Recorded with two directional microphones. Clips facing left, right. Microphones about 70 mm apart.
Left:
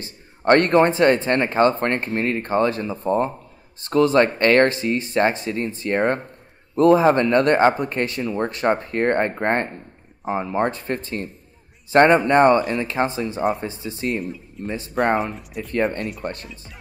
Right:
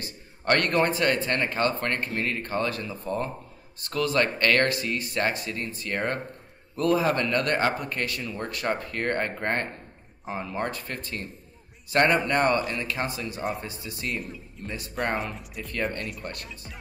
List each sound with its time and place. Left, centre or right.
0.0 s speech: left
12.5 s speech: centre
12.8 s speech: left
15.0 s speech: centre
16.2 s speech: left